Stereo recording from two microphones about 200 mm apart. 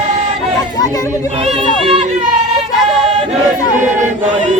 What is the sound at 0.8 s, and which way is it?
Speech, 20° left (ahead or behind).